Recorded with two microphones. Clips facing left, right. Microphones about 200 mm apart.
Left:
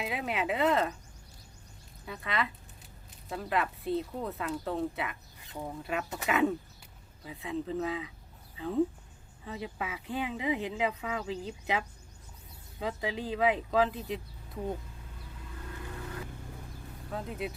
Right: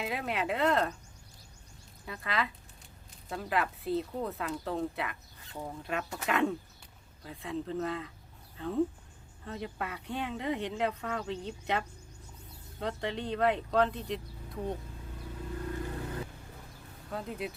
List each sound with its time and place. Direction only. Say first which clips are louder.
0.0 s speech: even; centre (ahead or behind)
2.0 s speech: even; centre (ahead or behind)
5.4 s chicken: left 1 dB; 15° left (ahead or behind)
5.6 s speech: left 1 dB; centre (ahead or behind)
17.1 s speech: left 1 dB; centre (ahead or behind)